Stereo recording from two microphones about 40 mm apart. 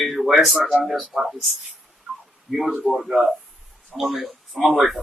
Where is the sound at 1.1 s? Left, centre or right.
Centre.